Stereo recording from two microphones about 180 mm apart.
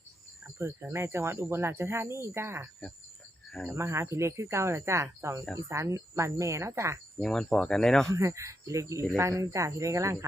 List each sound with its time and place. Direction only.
0.4 s speech: 15° right (ahead or behind)
3.7 s speech: 15° right (ahead or behind)
7.2 s speech: 5° left (ahead or behind)
8.1 s speech: 15° right (ahead or behind)